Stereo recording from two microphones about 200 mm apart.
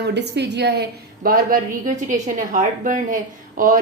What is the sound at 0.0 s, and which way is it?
A woman's voice, 55° right (ahead or behind).